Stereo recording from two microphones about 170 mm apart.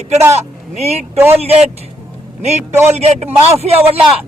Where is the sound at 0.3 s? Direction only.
40° right (ahead or behind).